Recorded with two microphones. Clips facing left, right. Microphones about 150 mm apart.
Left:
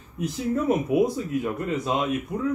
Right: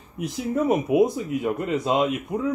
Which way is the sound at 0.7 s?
20° right (ahead or behind).